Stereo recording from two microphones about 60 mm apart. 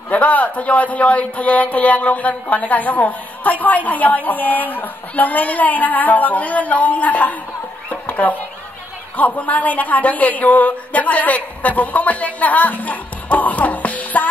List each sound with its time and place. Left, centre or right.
0.1 s a woman's voice: left
7.9 s a sound: left
9.1 s a woman's voice: left